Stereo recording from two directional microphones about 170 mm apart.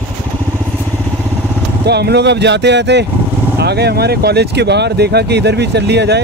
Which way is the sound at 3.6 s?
75° right (ahead or behind).